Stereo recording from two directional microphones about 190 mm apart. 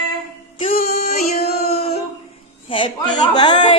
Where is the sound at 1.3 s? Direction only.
55° left (ahead or behind).